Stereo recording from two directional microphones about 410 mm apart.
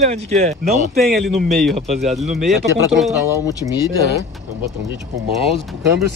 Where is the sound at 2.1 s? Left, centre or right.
Centre.